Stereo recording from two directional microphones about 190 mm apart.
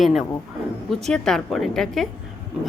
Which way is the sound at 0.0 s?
Centre (ahead or behind).